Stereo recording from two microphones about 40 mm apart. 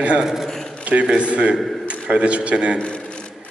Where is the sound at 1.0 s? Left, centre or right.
Right.